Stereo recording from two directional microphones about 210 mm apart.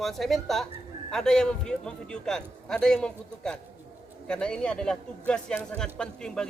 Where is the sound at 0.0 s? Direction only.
Centre (ahead or behind).